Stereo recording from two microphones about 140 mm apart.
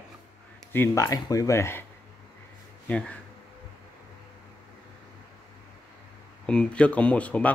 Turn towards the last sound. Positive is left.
turn(degrees=10)  # may be behind; listen again after turning